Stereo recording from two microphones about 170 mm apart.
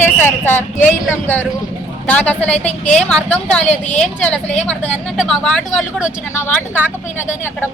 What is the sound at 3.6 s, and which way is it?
Speech, 45° left (ahead or behind).